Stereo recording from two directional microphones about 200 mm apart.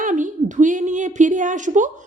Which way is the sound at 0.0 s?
40° right (ahead or behind).